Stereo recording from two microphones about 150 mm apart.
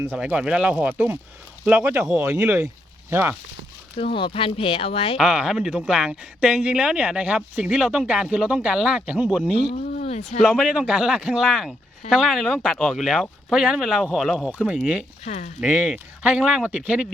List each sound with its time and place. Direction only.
0.0 s speech: 10° right (ahead or behind)
3.9 s speech: 35° left (ahead or behind)
5.1 s speech: 5° right (ahead or behind)
9.7 s a sound: 60° left (ahead or behind)
10.4 s speech: 5° right (ahead or behind)
15.2 s speech: 50° left (ahead or behind)
15.6 s speech: 10° right (ahead or behind)